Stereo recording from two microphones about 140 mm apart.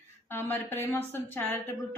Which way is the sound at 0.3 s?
15° left (ahead or behind).